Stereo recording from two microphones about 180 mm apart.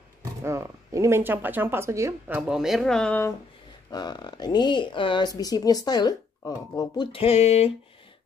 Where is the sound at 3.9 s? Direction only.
25° left (ahead or behind).